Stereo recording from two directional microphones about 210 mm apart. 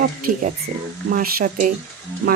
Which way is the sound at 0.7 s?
30° right (ahead or behind).